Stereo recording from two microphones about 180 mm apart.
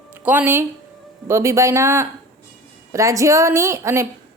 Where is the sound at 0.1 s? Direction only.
10° right (ahead or behind).